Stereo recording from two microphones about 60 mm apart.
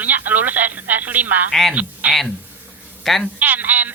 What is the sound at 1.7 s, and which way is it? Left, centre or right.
Speech, right.